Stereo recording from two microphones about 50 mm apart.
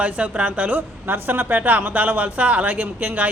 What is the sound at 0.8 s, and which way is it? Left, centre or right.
A man's voice, right.